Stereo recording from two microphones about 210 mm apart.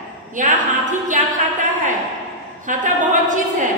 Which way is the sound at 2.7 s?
35° right (ahead or behind).